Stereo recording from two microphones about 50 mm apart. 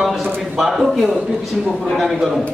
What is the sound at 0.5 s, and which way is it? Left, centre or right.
A man's voice, centre.